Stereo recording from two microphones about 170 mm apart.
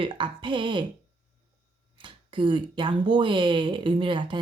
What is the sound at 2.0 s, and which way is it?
Speech, 30° right (ahead or behind).